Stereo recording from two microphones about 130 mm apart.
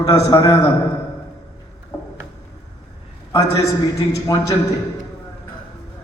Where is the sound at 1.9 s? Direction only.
25° left (ahead or behind).